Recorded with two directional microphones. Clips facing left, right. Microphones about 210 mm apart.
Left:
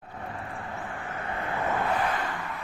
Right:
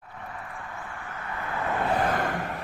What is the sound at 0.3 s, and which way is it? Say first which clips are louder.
Vehicle: left 3 dB; 30° left (ahead or behind).